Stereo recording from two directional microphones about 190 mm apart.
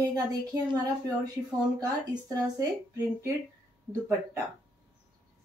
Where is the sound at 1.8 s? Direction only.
20° right (ahead or behind).